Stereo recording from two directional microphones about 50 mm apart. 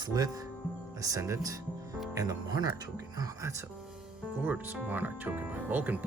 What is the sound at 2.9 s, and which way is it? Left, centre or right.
Speech, right.